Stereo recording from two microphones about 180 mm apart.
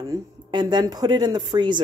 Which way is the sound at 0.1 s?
25° right (ahead or behind).